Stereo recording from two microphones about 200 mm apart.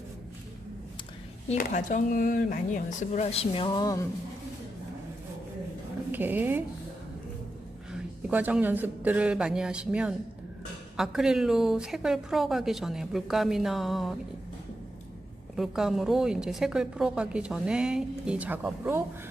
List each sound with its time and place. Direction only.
1.5 s speech: 40° left (ahead or behind); by 4.0 s 20° left (ahead or behind)
6.1 s speech: 10° right (ahead or behind)
8.3 s a woman's voice: 10° right (ahead or behind)
15.5 s a woman's voice: centre (ahead or behind)